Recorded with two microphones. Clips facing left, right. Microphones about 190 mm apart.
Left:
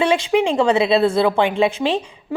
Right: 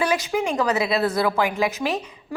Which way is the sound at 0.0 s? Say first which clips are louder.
Left 6 dB; 25° left (ahead or behind).